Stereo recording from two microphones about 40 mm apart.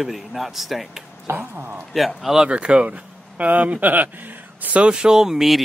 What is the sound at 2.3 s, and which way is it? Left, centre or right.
Speech, right.